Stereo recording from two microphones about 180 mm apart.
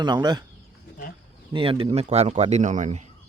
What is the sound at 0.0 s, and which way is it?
Speech, 25° right (ahead or behind).